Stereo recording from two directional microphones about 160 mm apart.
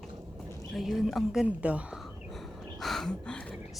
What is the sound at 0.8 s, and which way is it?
Speech, centre (ahead or behind).